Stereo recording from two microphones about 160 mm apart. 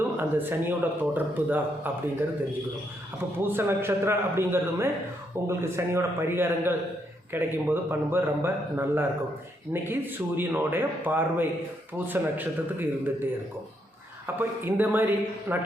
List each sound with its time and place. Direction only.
0.2 s a man's voice: 15° right (ahead or behind)
3.3 s a man's voice: 15° right (ahead or behind)
14.3 s a man's voice: 15° right (ahead or behind)